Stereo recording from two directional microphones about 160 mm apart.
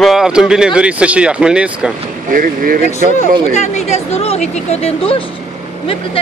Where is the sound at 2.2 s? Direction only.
60° right (ahead or behind).